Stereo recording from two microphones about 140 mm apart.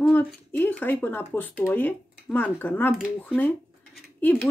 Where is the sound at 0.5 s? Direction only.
15° left (ahead or behind).